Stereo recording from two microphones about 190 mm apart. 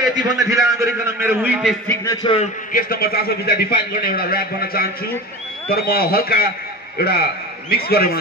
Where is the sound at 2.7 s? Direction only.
50° left (ahead or behind).